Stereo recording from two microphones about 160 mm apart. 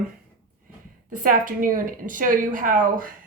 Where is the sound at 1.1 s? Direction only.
60° right (ahead or behind).